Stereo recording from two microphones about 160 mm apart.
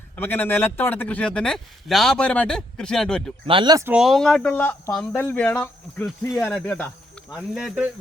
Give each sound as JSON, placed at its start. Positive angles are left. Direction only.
{"t": 0.2, "sound": "a man's voice", "side_deg": 10}
{"t": 3.4, "sound": "speech", "side_deg": -30}
{"t": 3.8, "sound": "a man's voice", "side_deg": -5}
{"t": 7.3, "sound": "speech", "side_deg": -5}